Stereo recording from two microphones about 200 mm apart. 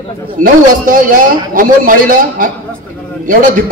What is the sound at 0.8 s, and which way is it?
A man's voice, 45° right (ahead or behind).